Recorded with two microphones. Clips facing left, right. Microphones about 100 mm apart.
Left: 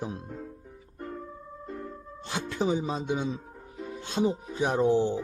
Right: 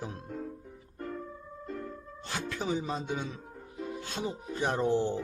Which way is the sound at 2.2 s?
20° left (ahead or behind).